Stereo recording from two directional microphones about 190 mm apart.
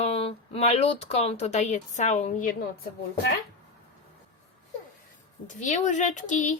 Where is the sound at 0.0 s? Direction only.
30° left (ahead or behind).